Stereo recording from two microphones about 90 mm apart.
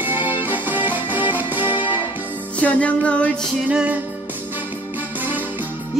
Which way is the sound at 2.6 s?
15° left (ahead or behind).